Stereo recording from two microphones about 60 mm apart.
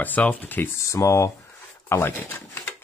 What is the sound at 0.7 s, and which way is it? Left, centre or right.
Speech, left.